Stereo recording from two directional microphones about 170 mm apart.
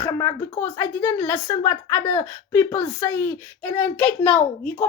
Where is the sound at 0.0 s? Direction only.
15° left (ahead or behind).